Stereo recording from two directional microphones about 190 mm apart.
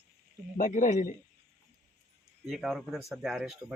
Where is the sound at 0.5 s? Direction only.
45° left (ahead or behind).